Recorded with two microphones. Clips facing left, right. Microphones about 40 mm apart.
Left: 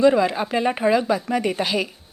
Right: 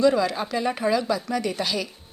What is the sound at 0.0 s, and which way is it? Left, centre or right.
Speech, left.